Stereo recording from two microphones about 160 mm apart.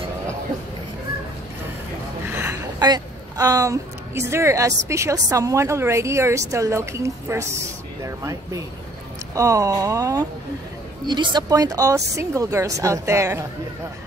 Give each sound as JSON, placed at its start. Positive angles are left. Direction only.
{"t": 2.8, "sound": "a woman's voice", "side_deg": -25}